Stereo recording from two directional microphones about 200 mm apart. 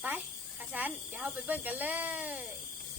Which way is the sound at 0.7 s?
10° right (ahead or behind).